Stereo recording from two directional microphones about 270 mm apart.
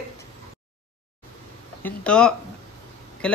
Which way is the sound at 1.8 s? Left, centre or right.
Centre.